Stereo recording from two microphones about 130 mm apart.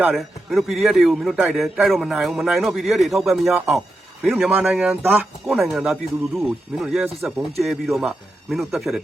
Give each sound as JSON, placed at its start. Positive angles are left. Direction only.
{"t": 0.2, "sound": "a man's voice", "side_deg": 0}
{"t": 3.7, "sound": "a sound", "side_deg": 0}
{"t": 4.4, "sound": "speech", "side_deg": -15}
{"t": 4.6, "sound": "a man's voice", "side_deg": -5}
{"t": 5.0, "sound": "speech", "side_deg": -15}
{"t": 5.5, "sound": "a man's voice", "side_deg": -5}